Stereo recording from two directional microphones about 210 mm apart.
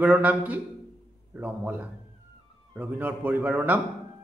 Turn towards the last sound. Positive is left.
turn(degrees=-5)  # may be behind; listen again after turning